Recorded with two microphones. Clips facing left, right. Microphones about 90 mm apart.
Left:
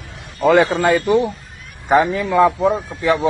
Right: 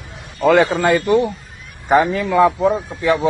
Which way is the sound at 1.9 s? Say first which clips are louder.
Even; centre (ahead or behind).